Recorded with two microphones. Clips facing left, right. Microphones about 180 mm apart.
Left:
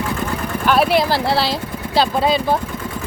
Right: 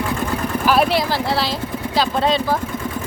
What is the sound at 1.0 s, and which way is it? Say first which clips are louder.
Speech: left 3 dB; 35° left (ahead or behind).